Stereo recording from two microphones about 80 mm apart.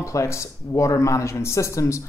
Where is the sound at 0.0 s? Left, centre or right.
Left.